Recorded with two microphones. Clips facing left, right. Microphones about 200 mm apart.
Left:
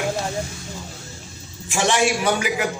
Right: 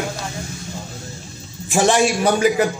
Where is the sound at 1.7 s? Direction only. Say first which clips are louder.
Right 4 dB; 40° right (ahead or behind).